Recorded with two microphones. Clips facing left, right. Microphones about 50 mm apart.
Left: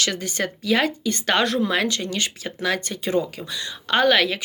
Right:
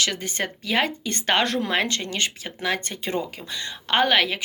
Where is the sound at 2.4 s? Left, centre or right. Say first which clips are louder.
Left 2 dB; centre.